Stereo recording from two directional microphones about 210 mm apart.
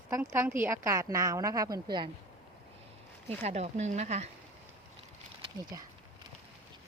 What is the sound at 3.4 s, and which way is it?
Speech, 30° right (ahead or behind).